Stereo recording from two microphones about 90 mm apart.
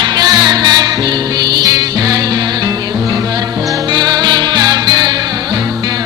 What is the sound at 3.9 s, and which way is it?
Music, 50° right (ahead or behind).